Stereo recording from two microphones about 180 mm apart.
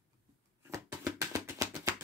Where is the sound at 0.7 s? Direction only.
15° right (ahead or behind).